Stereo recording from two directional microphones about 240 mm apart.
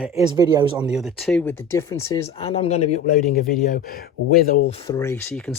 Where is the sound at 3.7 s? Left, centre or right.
Left.